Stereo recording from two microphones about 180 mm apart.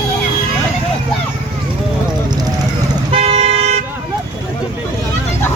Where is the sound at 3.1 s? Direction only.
35° right (ahead or behind).